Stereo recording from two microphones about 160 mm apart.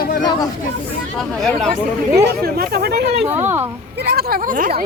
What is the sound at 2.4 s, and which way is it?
Chatter, 75° right (ahead or behind).